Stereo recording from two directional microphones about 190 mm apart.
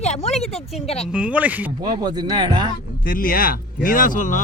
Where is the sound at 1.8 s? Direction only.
20° right (ahead or behind).